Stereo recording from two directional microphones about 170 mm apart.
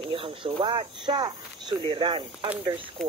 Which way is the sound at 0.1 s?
30° right (ahead or behind).